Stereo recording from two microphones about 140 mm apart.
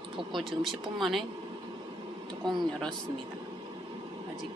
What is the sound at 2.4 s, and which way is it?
Speech, 30° right (ahead or behind).